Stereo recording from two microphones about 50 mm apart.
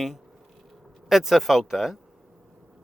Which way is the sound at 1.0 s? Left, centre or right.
Centre.